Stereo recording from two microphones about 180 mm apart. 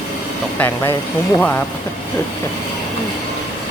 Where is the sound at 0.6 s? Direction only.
15° left (ahead or behind).